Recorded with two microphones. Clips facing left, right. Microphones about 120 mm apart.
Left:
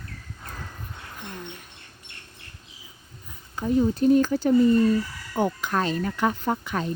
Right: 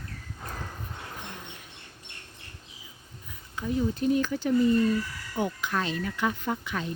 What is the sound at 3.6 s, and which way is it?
Speech, 40° left (ahead or behind).